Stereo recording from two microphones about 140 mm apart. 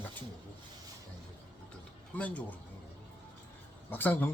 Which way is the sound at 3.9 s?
15° left (ahead or behind).